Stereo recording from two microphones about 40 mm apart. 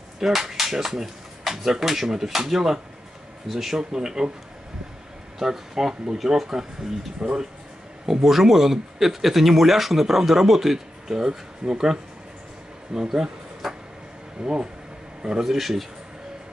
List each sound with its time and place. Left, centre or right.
0.2 s speech: centre
5.4 s speech: centre
7.2 s speech: right
8.1 s speech: centre
12.9 s speech: centre
13.6 s a sound: centre
14.4 s speech: right
15.4 s speech: centre